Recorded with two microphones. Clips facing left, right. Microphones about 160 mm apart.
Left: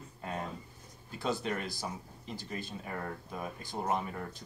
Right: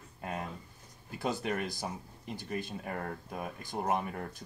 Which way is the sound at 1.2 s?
15° right (ahead or behind).